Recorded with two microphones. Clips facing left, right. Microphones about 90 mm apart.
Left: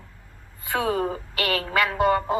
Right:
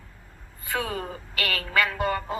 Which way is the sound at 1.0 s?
35° left (ahead or behind).